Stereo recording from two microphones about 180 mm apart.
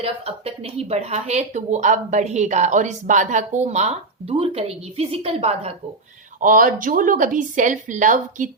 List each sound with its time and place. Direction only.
0.0 s speech: 35° right (ahead or behind)
6.4 s speech: 50° right (ahead or behind)